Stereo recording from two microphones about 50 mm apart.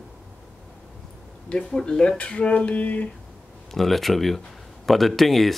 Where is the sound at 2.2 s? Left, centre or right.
Left.